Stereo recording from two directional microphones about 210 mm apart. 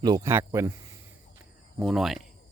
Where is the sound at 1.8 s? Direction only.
Centre (ahead or behind).